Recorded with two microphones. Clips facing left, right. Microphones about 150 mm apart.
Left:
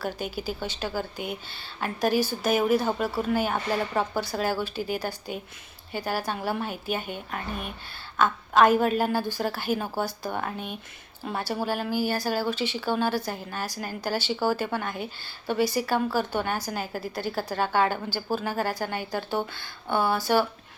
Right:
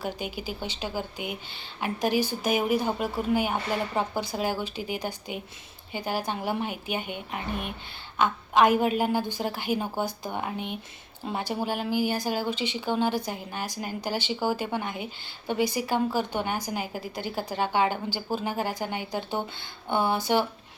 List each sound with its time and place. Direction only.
0.0 s a woman's voice: 15° right (ahead or behind)